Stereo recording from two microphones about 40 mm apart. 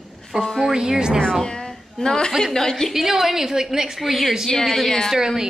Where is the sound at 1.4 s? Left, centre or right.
Centre.